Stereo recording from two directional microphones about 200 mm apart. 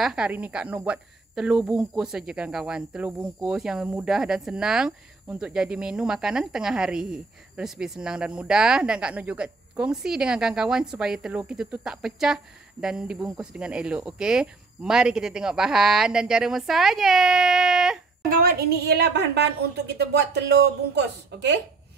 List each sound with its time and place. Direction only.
0.0 s speech: 5° right (ahead or behind)
18.2 s a woman's voice: 45° right (ahead or behind)